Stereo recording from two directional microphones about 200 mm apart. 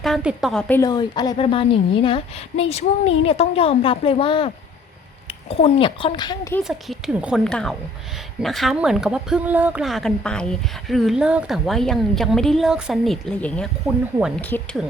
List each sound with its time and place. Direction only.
0.0 s a woman's voice: centre (ahead or behind)
0.8 s a woman's voice: 20° left (ahead or behind)
6.7 s speech: centre (ahead or behind)